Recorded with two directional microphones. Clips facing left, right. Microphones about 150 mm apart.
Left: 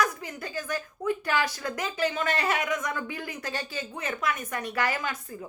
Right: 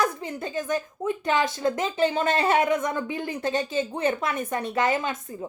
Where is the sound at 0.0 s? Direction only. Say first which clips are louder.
Right 3 dB; 25° right (ahead or behind).